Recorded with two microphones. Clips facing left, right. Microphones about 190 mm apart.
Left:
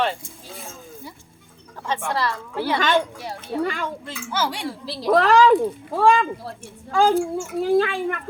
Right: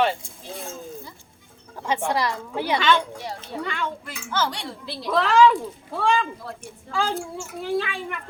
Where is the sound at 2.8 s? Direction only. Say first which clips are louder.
Even; 40° left (ahead or behind).